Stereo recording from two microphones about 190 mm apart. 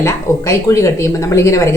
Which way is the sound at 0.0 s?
15° left (ahead or behind).